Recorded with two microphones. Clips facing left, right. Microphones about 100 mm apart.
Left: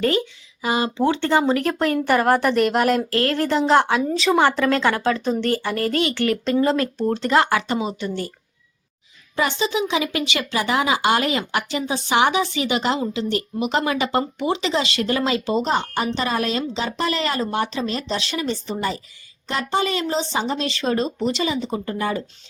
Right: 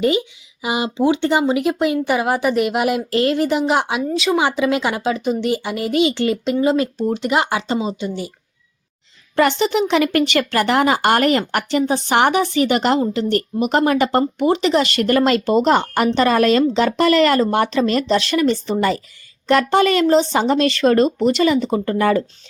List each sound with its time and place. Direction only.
0.6 s a woman's voice: 15° right (ahead or behind)
9.3 s speech: 65° right (ahead or behind)